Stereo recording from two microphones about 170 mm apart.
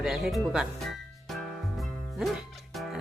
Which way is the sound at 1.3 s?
Centre (ahead or behind).